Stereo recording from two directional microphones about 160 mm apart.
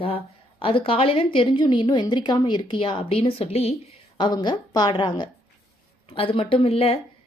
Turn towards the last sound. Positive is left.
turn(degrees=35)  # may be behind; listen again after turning